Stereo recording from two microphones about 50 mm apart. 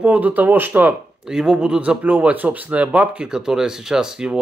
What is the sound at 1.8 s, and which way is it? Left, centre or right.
Speech, right.